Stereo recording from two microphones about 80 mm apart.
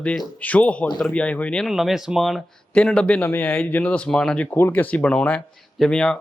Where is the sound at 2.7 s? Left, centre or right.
Centre.